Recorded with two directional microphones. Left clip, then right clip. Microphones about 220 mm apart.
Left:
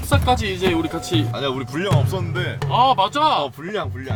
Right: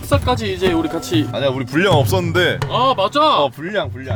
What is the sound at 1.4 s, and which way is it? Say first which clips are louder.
Speech: right 5 dB; 25° right (ahead or behind).